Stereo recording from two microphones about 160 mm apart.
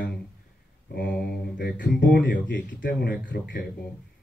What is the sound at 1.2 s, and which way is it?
Speech, 80° left.